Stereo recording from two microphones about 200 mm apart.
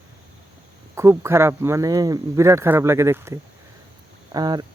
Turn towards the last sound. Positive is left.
turn(degrees=-20)  # may be behind; listen again after turning